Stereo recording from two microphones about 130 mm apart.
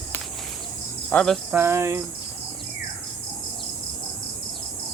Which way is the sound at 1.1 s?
5° left (ahead or behind).